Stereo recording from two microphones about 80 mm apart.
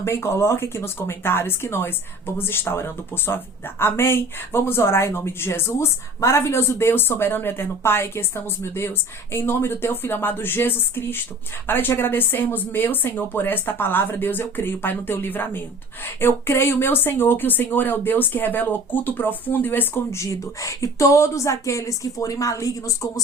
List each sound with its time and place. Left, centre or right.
0.0 s speech: left
9.3 s speech: left